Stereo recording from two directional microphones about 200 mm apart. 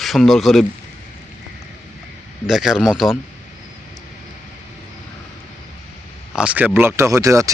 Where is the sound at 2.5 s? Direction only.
Centre (ahead or behind).